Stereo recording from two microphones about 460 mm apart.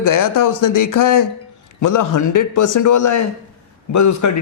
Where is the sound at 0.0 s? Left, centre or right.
Left.